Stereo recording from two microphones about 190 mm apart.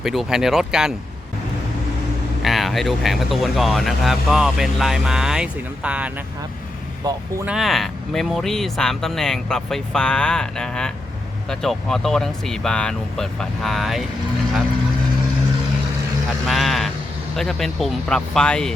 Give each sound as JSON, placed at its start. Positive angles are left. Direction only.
{"t": 0.0, "sound": "speech", "side_deg": 0}
{"t": 2.4, "sound": "speech", "side_deg": 0}
{"t": 7.4, "sound": "speech", "side_deg": 0}
{"t": 16.5, "sound": "speech", "side_deg": 0}